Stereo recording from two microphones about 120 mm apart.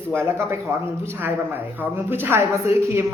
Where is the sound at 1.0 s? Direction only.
20° right (ahead or behind).